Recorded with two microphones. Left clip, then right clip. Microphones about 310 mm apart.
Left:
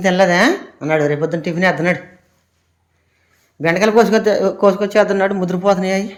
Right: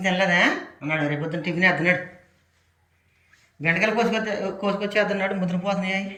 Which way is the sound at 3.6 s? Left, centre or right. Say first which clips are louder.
Left 9 dB; centre.